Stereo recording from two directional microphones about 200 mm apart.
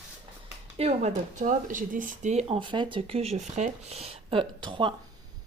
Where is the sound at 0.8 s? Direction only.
35° right (ahead or behind).